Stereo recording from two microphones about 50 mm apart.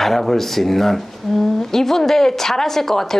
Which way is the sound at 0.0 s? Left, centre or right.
Centre.